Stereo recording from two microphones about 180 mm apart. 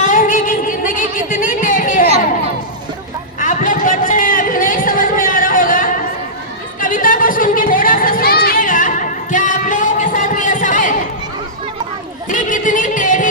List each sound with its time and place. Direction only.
0.0 s music: 45° left (ahead or behind)
3.4 s a sound: 50° left (ahead or behind)
12.3 s music: 45° left (ahead or behind)